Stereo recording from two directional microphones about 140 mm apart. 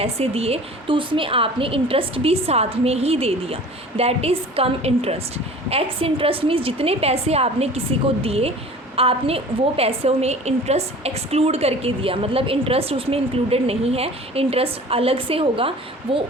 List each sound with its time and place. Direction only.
0.0 s a woman's voice: 45° right (ahead or behind)